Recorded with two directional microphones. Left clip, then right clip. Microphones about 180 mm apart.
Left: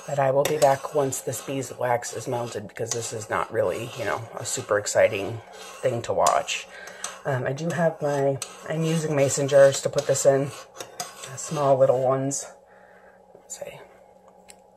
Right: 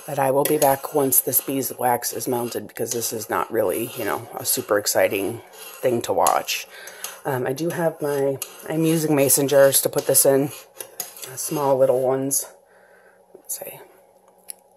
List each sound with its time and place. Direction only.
0.1 s speech: 75° right (ahead or behind)
5.8 s cutlery: 70° right (ahead or behind)
13.5 s speech: 65° right (ahead or behind)